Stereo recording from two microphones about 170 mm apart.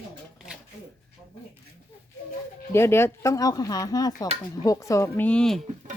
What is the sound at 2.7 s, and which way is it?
Speech, 15° left (ahead or behind).